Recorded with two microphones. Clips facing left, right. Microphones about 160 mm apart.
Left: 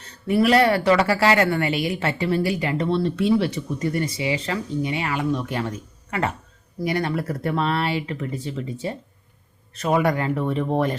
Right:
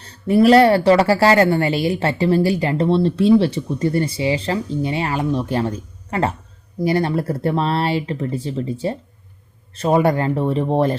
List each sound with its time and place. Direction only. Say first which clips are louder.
0.0 s a woman's voice: right 6 dB; 30° right (ahead or behind)